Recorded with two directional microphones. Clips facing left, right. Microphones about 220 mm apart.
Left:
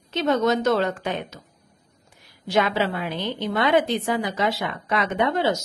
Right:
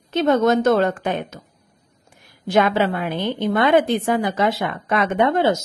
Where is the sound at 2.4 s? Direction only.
50° right (ahead or behind).